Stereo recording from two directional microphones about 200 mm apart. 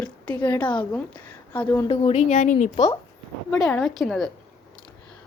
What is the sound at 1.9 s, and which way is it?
Speech, 30° left (ahead or behind).